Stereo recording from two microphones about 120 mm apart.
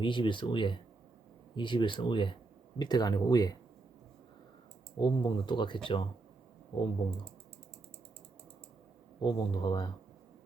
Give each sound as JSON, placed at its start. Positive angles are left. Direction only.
{"t": 0.0, "sound": "speech", "side_deg": 45}
{"t": 4.9, "sound": "speech", "side_deg": 40}
{"t": 9.2, "sound": "speech", "side_deg": 40}